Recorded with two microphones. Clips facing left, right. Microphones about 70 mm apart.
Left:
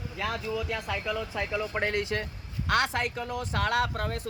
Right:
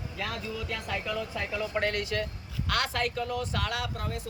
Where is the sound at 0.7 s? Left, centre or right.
Centre.